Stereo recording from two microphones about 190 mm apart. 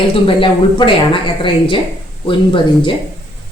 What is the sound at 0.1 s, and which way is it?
A woman's voice, 30° left (ahead or behind).